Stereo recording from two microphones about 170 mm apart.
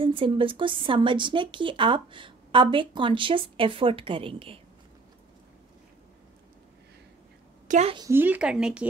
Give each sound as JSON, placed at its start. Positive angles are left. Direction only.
{"t": 0.0, "sound": "a woman's voice", "side_deg": -30}
{"t": 7.6, "sound": "a woman's voice", "side_deg": -45}
{"t": 8.1, "sound": "speech", "side_deg": -10}